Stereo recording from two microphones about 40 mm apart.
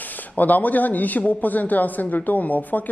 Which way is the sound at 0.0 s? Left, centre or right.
Left.